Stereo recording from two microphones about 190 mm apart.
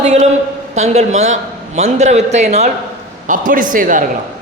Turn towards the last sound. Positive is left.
turn(degrees=-45)  # may be behind; listen again after turning